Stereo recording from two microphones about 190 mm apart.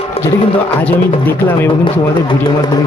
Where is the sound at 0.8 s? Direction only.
10° left (ahead or behind).